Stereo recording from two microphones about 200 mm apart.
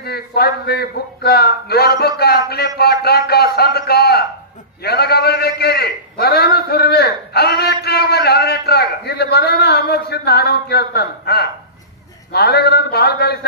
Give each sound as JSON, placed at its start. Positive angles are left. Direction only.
{"t": 0.0, "sound": "a man's voice", "side_deg": 50}